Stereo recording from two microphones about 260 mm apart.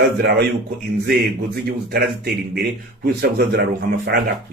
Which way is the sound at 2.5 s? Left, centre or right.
Right.